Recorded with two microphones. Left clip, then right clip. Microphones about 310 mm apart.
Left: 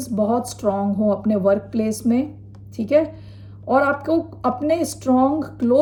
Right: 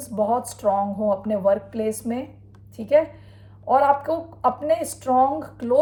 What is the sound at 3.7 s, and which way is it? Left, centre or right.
Speech, centre.